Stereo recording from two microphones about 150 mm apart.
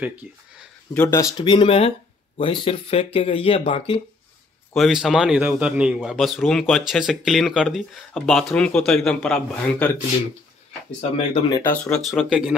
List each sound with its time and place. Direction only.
0.0 s speech: 10° right (ahead or behind)
1.0 s speech: 20° left (ahead or behind)
1.5 s speech: 40° left (ahead or behind)
4.7 s speech: centre (ahead or behind)
11.0 s speech: 40° left (ahead or behind)
11.6 s speech: 10° left (ahead or behind)
12.1 s speech: centre (ahead or behind)